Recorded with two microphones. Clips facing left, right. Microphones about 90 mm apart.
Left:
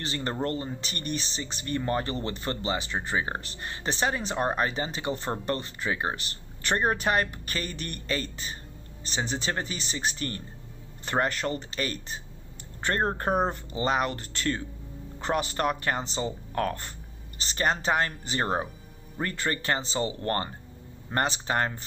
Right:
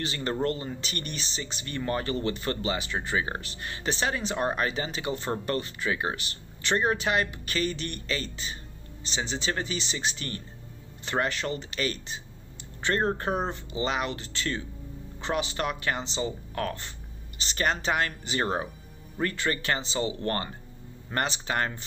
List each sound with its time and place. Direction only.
0.0 s speech: 35° left (ahead or behind)
13.5 s speech: 40° left (ahead or behind)